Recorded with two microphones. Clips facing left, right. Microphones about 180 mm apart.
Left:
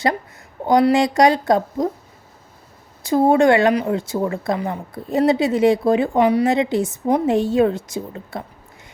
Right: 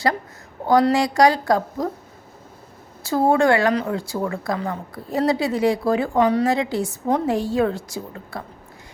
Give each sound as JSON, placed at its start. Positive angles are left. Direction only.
{"t": 0.6, "sound": "speech", "side_deg": 15}
{"t": 3.0, "sound": "speech", "side_deg": 20}